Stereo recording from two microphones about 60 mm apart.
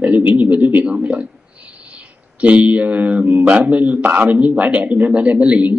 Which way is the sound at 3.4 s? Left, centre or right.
Centre.